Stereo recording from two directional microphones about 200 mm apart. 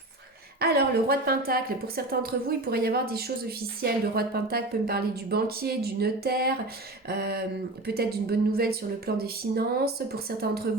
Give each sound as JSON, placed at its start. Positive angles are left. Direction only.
{"t": 0.6, "sound": "a woman's voice", "side_deg": -50}